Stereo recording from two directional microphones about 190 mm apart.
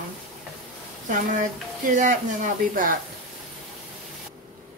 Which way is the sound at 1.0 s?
40° right (ahead or behind).